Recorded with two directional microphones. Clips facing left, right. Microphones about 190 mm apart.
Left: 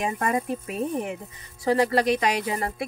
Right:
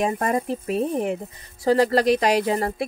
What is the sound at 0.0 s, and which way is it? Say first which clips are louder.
Speech: right 3 dB; 40° right (ahead or behind).